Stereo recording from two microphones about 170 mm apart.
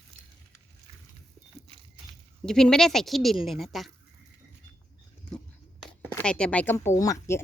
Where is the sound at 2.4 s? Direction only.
5° left (ahead or behind).